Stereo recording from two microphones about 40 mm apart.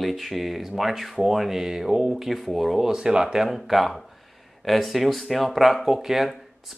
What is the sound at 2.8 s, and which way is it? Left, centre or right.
Speech, centre.